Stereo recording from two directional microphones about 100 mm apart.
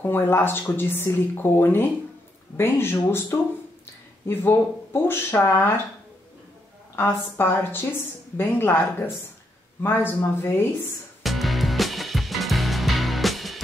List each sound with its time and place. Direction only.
0.1 s speech: 20° left (ahead or behind)
7.0 s speech: 20° left (ahead or behind)
11.2 s music: centre (ahead or behind)